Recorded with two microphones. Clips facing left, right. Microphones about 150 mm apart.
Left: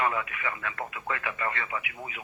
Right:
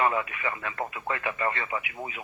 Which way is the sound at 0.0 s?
30° right (ahead or behind).